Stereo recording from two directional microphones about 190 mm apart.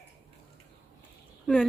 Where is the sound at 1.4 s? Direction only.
Centre (ahead or behind).